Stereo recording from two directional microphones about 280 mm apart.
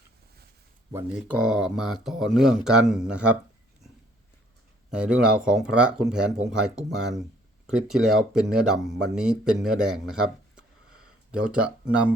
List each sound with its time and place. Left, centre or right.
0.9 s speech: centre
4.9 s speech: centre